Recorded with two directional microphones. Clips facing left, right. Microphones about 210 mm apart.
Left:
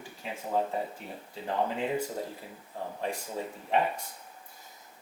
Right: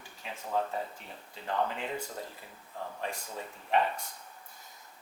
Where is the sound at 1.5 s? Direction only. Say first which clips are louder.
Left 2 dB; 15° left (ahead or behind).